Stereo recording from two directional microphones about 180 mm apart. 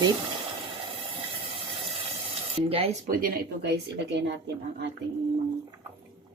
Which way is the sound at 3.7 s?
70° right (ahead or behind).